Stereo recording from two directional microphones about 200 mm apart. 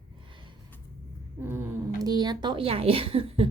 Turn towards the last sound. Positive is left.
turn(degrees=-30)  # may be behind; listen again after turning